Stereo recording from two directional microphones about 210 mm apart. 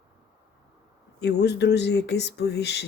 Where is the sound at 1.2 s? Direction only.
50° left (ahead or behind).